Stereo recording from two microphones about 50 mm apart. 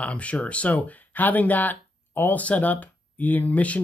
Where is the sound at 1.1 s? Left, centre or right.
Left.